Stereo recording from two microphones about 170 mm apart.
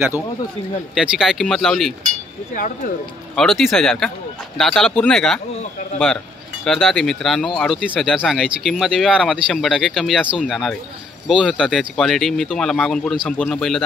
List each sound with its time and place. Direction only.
0.9 s speech: 5° right (ahead or behind)
2.5 s speech: 50° left (ahead or behind)
3.3 s speech: centre (ahead or behind)
6.6 s speech: centre (ahead or behind)